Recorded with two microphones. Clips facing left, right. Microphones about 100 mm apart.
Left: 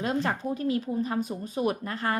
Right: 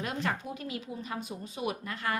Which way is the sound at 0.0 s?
30° left (ahead or behind).